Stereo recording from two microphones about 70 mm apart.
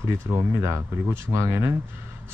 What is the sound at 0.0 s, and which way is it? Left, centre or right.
Speech, right.